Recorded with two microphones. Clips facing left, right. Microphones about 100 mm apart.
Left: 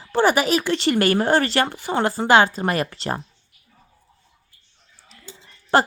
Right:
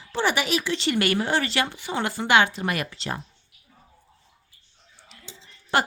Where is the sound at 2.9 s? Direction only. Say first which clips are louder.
Left 5 dB; 50° left (ahead or behind).